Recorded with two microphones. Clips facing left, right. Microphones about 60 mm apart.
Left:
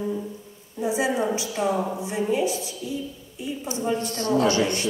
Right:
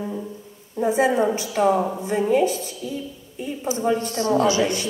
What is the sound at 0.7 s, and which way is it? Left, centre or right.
A woman's voice, right.